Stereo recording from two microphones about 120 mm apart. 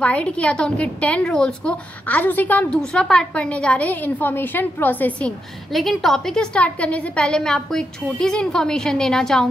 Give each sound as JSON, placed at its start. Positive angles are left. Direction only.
{"t": 0.0, "sound": "a woman's voice", "side_deg": 10}
{"t": 5.7, "sound": "a woman's voice", "side_deg": 0}